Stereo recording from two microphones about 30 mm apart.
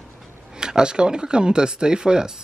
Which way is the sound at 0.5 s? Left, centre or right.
Right.